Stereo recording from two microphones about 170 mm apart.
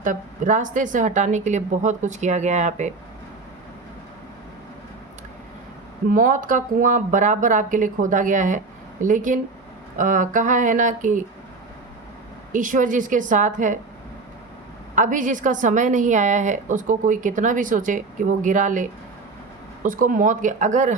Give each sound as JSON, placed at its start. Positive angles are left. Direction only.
{"t": 0.0, "sound": "a woman's voice", "side_deg": -50}
{"t": 6.1, "sound": "a woman's voice", "side_deg": -55}
{"t": 12.5, "sound": "a woman's voice", "side_deg": -50}
{"t": 14.9, "sound": "a woman's voice", "side_deg": -50}